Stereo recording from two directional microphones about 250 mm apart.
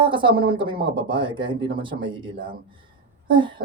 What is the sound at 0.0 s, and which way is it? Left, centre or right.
Speech, centre.